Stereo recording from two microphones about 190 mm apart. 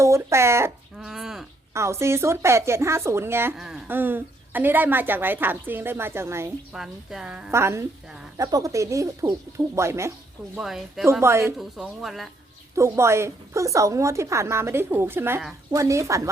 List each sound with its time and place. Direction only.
0.0 s speech: 15° right (ahead or behind)
0.9 s a sound: 5° right (ahead or behind)
1.7 s speech: 15° right (ahead or behind)
6.7 s a woman's voice: 5° right (ahead or behind)
10.5 s a woman's voice: centre (ahead or behind)
11.0 s speech: 15° right (ahead or behind)
11.5 s a woman's voice: centre (ahead or behind)
12.7 s speech: 15° right (ahead or behind)